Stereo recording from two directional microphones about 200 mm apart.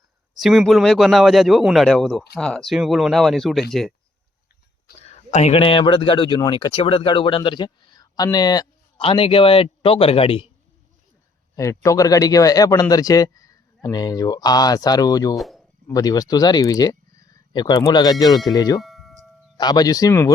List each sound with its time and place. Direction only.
0.3 s a man's voice: centre (ahead or behind)
5.3 s speech: 30° left (ahead or behind)
11.5 s speech: 15° left (ahead or behind)
15.4 s speech: centre (ahead or behind)
15.9 s speech: 20° left (ahead or behind)
18.8 s chime: centre (ahead or behind)
19.5 s speech: 20° left (ahead or behind)